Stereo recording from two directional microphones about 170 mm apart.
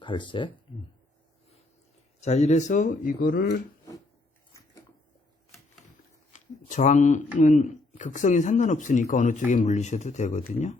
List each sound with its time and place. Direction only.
0.0 s speech: 30° left (ahead or behind)
2.2 s speech: 40° left (ahead or behind); by 3.6 s 65° left (ahead or behind)
6.3 s a sound: 45° left (ahead or behind)
7.3 s speech: 45° left (ahead or behind)